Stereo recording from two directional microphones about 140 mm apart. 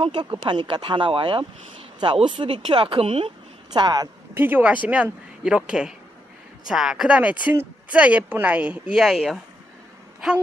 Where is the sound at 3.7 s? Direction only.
30° right (ahead or behind).